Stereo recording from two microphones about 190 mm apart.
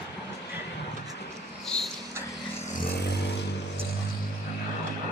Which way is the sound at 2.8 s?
55° left (ahead or behind).